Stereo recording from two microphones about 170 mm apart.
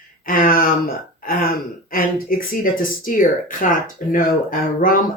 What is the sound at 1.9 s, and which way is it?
Speech, 55° left (ahead or behind).